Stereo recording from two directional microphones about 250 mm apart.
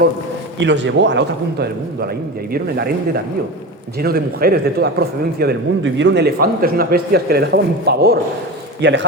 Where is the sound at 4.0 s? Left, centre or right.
Right.